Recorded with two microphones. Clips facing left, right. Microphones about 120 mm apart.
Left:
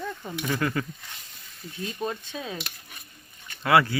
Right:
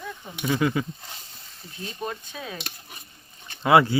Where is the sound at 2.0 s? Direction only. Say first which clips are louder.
Left 1 dB; 25° left (ahead or behind).